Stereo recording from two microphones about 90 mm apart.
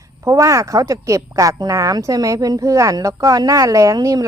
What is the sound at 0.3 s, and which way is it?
Speech, 35° right (ahead or behind).